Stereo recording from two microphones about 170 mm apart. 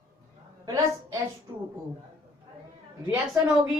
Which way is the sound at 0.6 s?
20° right (ahead or behind).